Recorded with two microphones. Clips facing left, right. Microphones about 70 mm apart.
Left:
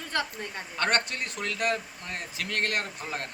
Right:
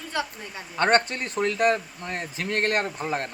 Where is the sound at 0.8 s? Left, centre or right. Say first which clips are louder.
Right 6 dB; right.